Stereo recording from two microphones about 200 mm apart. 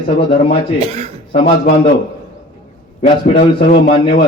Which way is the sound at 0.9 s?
30° right (ahead or behind).